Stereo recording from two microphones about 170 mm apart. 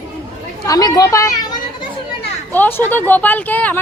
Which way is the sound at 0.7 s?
20° left (ahead or behind).